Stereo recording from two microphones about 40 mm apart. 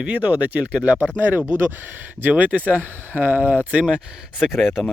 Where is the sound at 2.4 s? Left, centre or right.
Right.